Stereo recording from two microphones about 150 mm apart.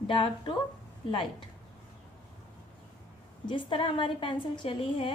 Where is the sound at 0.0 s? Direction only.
35° left (ahead or behind).